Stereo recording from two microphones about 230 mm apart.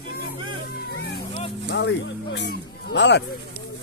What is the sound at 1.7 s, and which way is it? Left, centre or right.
Speech, left.